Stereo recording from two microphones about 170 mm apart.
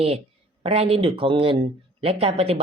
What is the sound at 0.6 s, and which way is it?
Speech, 35° right (ahead or behind).